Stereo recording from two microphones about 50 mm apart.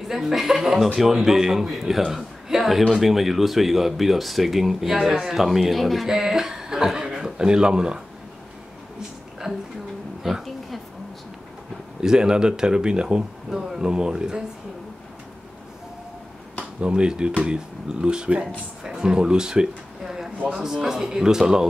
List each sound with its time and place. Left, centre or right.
0.1 s speech: centre
6.0 s a man's voice: centre
9.5 s a sound: centre
10.3 s speech: centre
12.0 s speech: centre
16.8 s speech: centre